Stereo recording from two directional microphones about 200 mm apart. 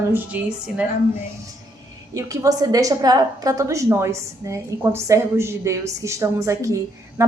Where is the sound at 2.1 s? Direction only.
15° right (ahead or behind).